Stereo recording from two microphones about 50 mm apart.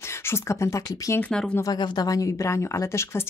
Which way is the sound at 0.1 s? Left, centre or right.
Left.